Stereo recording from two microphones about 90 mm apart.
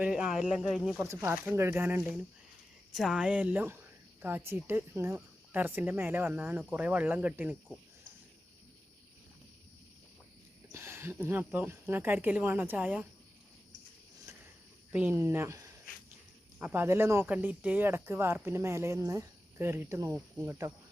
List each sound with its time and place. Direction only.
0.0 s speech: 5° right (ahead or behind)
1.0 s speech: 30° right (ahead or behind)
2.9 s speech: 5° right (ahead or behind)
10.7 s speech: 30° right (ahead or behind)
14.3 s a sound: 30° right (ahead or behind)
15.1 s speech: 25° right (ahead or behind)
16.6 s speech: 15° right (ahead or behind)
16.8 s speech: 30° right (ahead or behind)